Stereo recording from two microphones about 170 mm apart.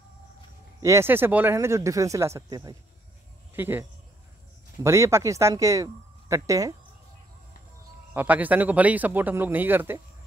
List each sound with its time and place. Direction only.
0.8 s speech: 15° right (ahead or behind)
4.8 s speech: 15° right (ahead or behind)
8.1 s speech: 10° right (ahead or behind)